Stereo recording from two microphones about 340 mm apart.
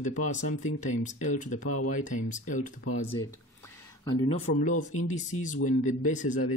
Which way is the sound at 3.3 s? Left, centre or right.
Centre.